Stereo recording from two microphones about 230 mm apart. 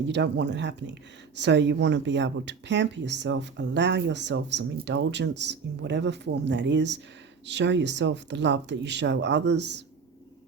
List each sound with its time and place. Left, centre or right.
0.1 s speech: right